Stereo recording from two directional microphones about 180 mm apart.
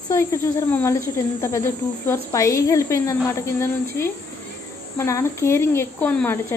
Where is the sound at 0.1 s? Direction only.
15° left (ahead or behind).